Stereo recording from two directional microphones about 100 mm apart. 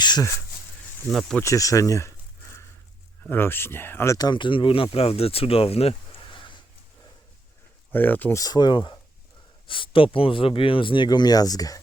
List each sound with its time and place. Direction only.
0.0 s speech: 45° left (ahead or behind)
1.0 s speech: centre (ahead or behind)
1.4 s a sound: 30° left (ahead or behind)
3.2 s speech: 20° left (ahead or behind)
4.2 s speech: 50° left (ahead or behind)
7.9 s speech: 15° left (ahead or behind)
8.4 s speech: 45° left (ahead or behind)
9.6 s speech: 60° left (ahead or behind); by 11.8 s 35° left (ahead or behind)